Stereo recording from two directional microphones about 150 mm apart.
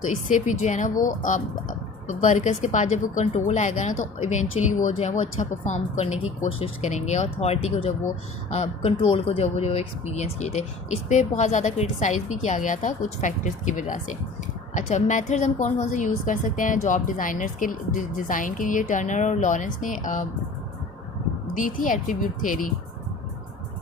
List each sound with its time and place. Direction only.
0.3 s a woman's voice: 55° left (ahead or behind)
21.6 s a woman's voice: 60° left (ahead or behind)